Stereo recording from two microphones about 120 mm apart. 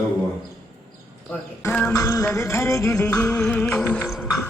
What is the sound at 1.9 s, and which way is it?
Music, 30° left (ahead or behind).